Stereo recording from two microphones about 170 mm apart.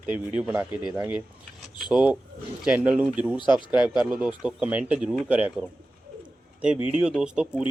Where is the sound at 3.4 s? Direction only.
30° left (ahead or behind).